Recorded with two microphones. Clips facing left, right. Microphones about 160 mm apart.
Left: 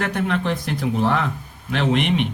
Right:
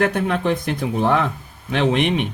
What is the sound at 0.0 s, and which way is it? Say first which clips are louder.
Speech: right 3 dB; 50° right (ahead or behind).